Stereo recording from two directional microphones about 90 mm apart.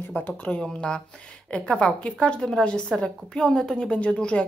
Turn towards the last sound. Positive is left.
turn(degrees=10)  # may be behind; listen again after turning